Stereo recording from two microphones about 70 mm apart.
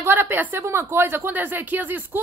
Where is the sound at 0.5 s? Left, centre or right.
Right.